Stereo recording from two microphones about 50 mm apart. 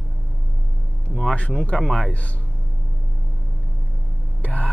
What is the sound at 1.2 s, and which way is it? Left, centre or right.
Speech, left.